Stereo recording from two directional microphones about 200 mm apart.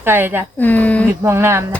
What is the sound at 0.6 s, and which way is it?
Speech, 10° left (ahead or behind).